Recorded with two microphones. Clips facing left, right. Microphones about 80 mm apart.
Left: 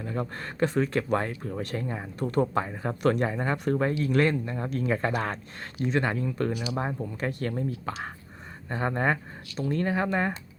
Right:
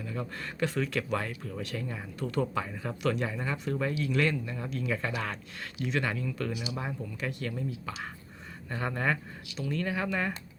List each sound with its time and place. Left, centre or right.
0.0 s speech: left
8.7 s speech: left